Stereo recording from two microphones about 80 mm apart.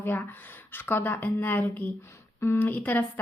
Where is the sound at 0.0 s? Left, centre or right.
Left.